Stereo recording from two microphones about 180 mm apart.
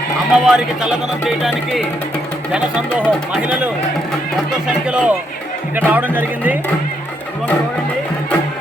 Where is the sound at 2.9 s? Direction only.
5° left (ahead or behind).